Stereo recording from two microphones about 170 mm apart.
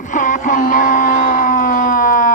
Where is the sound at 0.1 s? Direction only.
50° left (ahead or behind).